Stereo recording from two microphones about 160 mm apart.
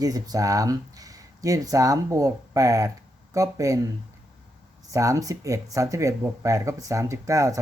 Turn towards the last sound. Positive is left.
turn(degrees=-20)  # may be behind; listen again after turning